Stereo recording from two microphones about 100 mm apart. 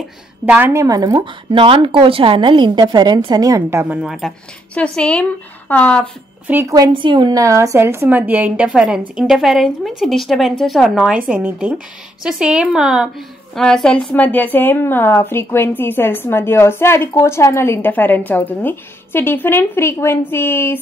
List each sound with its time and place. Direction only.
0.5 s a woman's voice: 20° right (ahead or behind)
0.8 s a woman's voice: 35° right (ahead or behind)
1.5 s a woman's voice: 60° right (ahead or behind); by 3.8 s 35° right (ahead or behind)
3.9 s speech: 5° right (ahead or behind)
4.7 s speech: 10° left (ahead or behind)
6.4 s a woman's voice: 20° right (ahead or behind)
6.9 s a woman's voice: 55° right (ahead or behind); by 13.1 s 5° right (ahead or behind)
13.6 s a woman's voice: 5° left (ahead or behind); by 20.8 s 20° left (ahead or behind)